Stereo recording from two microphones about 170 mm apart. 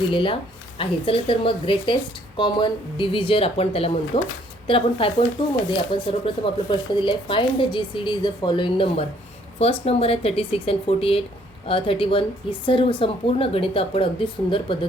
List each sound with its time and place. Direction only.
0.1 s a woman's voice: 30° left (ahead or behind)